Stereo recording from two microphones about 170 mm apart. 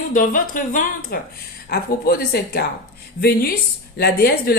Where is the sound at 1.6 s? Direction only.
65° left (ahead or behind).